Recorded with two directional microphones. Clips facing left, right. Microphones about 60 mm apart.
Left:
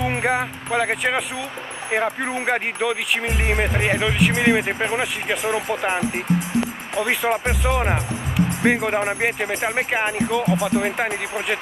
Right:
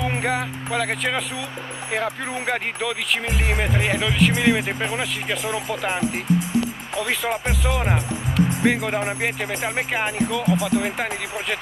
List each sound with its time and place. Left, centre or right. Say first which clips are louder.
0.0 s speech: left 2 dB; centre